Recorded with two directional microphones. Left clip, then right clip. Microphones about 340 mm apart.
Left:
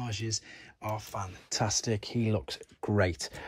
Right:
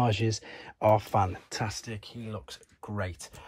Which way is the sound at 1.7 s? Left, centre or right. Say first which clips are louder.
Left 9 dB; centre.